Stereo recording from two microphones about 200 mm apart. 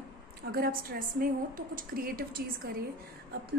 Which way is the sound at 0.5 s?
50° right (ahead or behind).